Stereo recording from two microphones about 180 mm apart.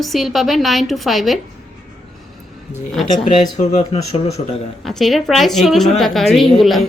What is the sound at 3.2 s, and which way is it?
Speech, 35° left (ahead or behind).